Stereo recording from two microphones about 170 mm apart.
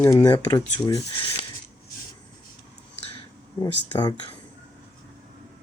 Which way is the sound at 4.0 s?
25° left (ahead or behind).